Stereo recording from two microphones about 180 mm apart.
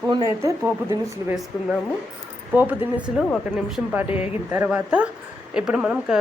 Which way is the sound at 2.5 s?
10° right (ahead or behind).